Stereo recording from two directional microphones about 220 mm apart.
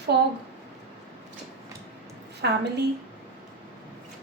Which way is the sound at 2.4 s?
50° right (ahead or behind).